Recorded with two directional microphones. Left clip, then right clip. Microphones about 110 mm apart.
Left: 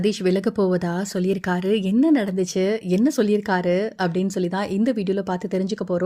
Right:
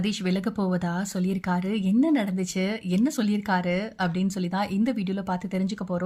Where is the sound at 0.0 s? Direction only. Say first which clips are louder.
Left 8 dB; 20° left (ahead or behind).